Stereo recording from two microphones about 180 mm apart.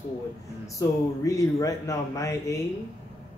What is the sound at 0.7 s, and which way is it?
Speech, 20° left (ahead or behind).